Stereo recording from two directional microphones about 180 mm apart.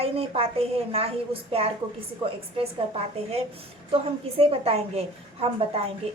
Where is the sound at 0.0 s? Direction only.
35° right (ahead or behind).